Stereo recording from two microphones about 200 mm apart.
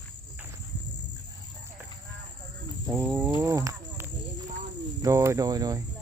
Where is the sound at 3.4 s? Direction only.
15° right (ahead or behind).